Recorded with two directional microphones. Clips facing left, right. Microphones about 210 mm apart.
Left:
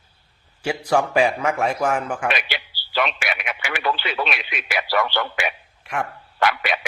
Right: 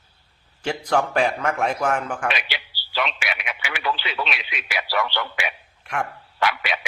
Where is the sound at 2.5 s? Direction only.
50° left (ahead or behind).